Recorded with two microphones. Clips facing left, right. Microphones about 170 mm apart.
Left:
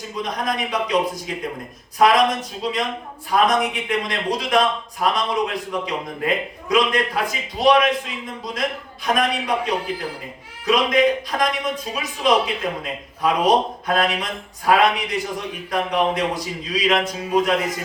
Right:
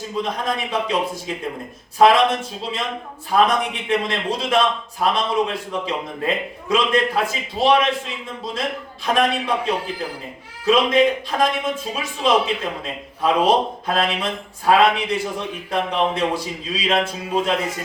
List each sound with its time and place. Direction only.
0.2 s speech: 30° right (ahead or behind)
9.1 s speech: 30° right (ahead or behind)